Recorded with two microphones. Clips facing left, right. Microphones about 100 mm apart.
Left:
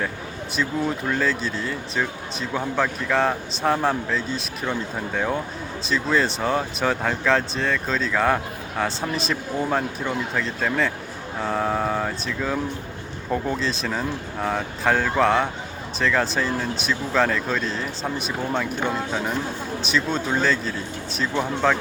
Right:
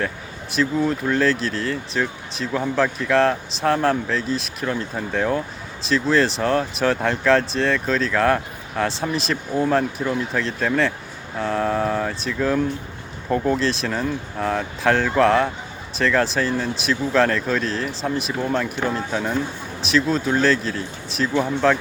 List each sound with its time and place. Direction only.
0.5 s speech: centre (ahead or behind)